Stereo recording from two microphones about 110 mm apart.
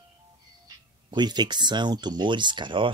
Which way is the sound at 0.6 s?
40° right (ahead or behind).